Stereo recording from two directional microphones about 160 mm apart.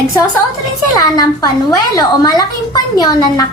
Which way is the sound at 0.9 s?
25° left (ahead or behind).